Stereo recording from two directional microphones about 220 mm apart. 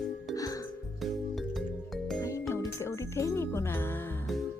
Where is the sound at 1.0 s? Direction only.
Centre (ahead or behind).